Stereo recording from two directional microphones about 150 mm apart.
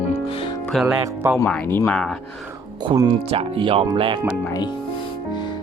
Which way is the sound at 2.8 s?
30° right (ahead or behind).